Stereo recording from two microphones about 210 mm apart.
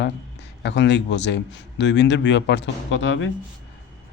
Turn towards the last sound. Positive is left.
turn(degrees=60)  # may be behind; listen again after turning